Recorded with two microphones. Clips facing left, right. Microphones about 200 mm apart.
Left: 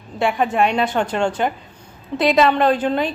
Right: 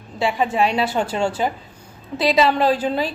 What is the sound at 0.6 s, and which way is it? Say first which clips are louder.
Speech: left 1 dB; 5° right (ahead or behind).